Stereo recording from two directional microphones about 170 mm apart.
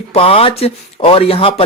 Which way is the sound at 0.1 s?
35° left (ahead or behind).